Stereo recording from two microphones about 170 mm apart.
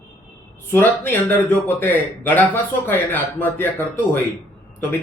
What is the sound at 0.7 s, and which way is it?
Speech, 15° left (ahead or behind).